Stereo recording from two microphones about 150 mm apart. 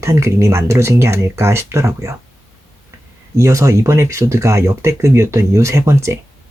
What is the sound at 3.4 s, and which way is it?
Speech, 20° right (ahead or behind).